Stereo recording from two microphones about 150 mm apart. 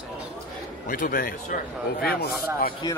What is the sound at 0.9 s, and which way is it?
A man's voice, 70° left (ahead or behind).